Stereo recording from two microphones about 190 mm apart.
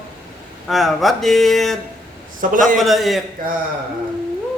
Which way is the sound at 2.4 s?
45° right (ahead or behind).